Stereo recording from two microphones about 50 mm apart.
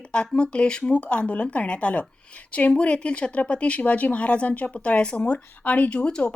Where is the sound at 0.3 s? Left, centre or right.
Centre.